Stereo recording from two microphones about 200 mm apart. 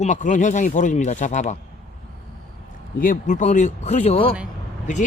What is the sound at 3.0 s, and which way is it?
Speech, 40° left (ahead or behind).